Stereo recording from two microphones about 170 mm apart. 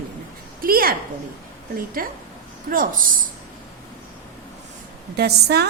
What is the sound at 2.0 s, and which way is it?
Speech, 55° right (ahead or behind).